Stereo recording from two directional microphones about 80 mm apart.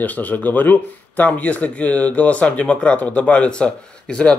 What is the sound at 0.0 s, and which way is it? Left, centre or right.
Speech, centre.